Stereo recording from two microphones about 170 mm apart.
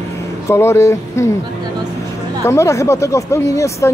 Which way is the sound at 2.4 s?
15° left (ahead or behind).